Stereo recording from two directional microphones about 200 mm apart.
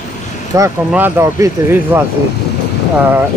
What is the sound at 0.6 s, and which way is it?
Speech, 10° right (ahead or behind).